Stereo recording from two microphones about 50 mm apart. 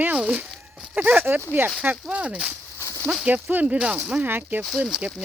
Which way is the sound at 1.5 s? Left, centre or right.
Right.